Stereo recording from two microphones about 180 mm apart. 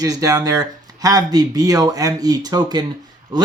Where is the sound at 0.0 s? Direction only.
20° right (ahead or behind).